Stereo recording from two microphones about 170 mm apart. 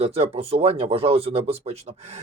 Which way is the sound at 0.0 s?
35° right (ahead or behind).